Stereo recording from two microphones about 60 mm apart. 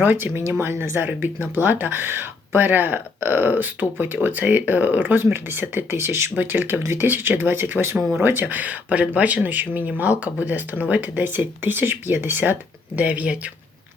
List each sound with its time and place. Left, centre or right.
0.0 s speech: right
1.6 s speech: right
5.2 s speech: right
6.3 s speech: right
6.8 s speech: right
7.1 s speech: right
13.0 s speech: right